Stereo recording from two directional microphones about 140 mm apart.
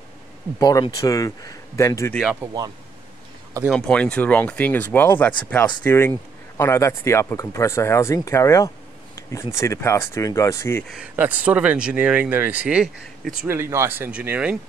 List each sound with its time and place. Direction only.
0.6 s speech: 25° left (ahead or behind)
2.4 s speech: 30° right (ahead or behind)
3.7 s speech: 5° left (ahead or behind)
10.8 s speech: centre (ahead or behind)
11.1 s speech: 10° right (ahead or behind)
13.5 s speech: 20° right (ahead or behind)